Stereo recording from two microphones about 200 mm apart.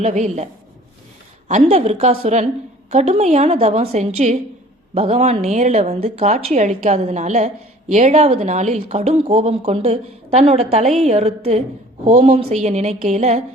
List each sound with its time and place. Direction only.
0.0 s a woman's voice: 35° right (ahead or behind)
1.5 s a woman's voice: 35° right (ahead or behind)